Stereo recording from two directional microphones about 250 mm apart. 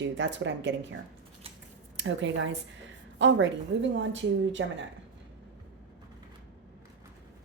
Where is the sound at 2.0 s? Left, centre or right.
Right.